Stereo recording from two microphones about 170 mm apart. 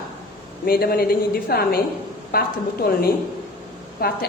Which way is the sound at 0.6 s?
65° left (ahead or behind).